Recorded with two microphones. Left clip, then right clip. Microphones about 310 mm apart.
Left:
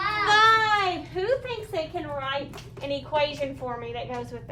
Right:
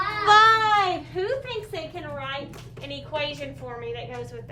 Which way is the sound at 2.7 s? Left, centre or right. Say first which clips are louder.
Left 5 dB; centre.